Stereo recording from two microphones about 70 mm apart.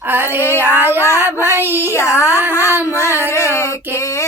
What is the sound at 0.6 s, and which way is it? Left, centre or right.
Child singing, right.